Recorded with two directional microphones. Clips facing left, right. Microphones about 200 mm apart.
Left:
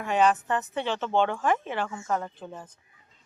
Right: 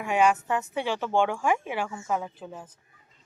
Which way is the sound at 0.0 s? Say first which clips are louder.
Even; 10° right (ahead or behind).